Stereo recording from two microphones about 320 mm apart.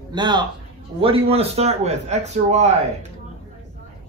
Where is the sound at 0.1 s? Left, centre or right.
Centre.